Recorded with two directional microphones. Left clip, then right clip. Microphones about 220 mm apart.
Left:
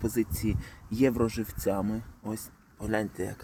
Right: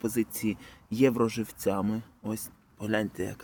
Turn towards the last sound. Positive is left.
turn(degrees=-10)  # may be behind; listen again after turning